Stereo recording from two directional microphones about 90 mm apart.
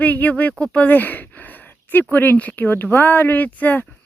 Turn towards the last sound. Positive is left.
turn(degrees=20)  # may be behind; listen again after turning